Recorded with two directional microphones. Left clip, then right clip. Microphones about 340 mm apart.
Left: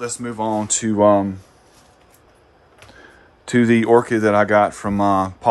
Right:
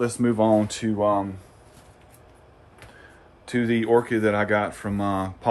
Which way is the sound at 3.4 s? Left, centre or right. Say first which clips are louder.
Left 8 dB; left.